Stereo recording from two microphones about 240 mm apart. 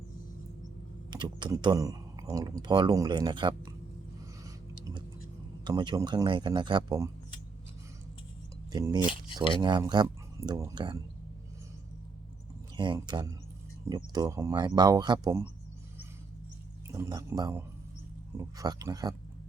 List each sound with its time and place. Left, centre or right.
1.1 s speech: centre
4.4 s a sound: centre
5.6 s speech: centre
8.7 s speech: centre
12.7 s speech: centre
16.9 s speech: centre